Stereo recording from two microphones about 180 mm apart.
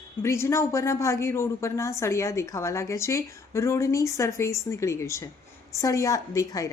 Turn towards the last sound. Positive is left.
turn(degrees=20)  # may be behind; listen again after turning